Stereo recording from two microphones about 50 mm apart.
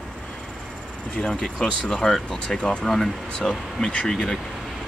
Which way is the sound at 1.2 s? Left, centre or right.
Centre.